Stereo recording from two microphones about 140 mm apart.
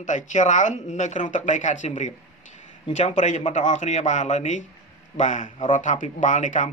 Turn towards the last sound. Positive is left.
turn(degrees=60)  # may be behind; listen again after turning